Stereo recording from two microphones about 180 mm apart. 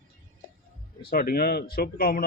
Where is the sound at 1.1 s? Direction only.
60° left (ahead or behind).